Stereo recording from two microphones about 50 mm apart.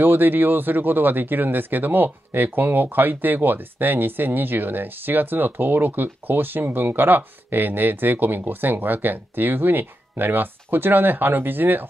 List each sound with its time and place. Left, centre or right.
0.0 s speech: right